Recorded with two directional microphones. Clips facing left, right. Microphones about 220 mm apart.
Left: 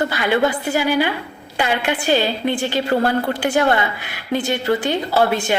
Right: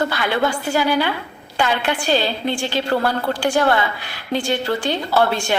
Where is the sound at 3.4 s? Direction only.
20° left (ahead or behind).